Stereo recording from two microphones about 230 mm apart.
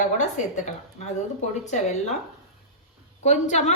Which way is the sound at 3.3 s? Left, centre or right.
Left.